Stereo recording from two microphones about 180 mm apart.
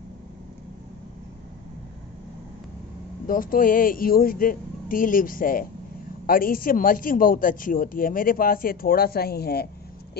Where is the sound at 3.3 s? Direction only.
50° left (ahead or behind).